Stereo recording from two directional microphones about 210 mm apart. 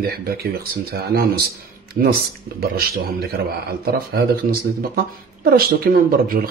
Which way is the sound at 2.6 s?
45° right (ahead or behind).